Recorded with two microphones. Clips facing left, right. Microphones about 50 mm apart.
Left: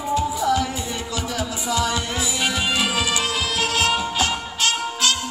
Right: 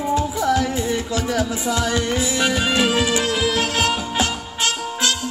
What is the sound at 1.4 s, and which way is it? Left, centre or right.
Music, right.